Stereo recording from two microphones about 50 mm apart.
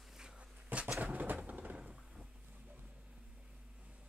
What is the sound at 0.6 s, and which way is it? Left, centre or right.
Pigeon, right.